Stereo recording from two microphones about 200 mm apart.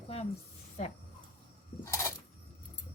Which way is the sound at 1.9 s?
15° left (ahead or behind).